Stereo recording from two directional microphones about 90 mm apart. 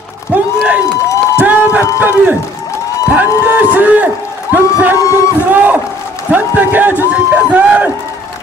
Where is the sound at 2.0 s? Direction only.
20° right (ahead or behind).